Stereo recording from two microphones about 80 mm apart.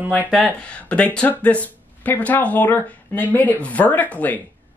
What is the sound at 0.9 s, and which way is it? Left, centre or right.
Speech, centre.